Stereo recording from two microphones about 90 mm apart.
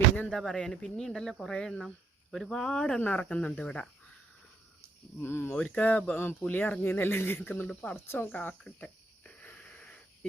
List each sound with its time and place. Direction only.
0.3 s speech: 5° left (ahead or behind)
5.2 s speech: 25° left (ahead or behind)
5.5 s speech: 10° left (ahead or behind)
7.9 s speech: 30° left (ahead or behind)
8.3 s a sound: 15° left (ahead or behind)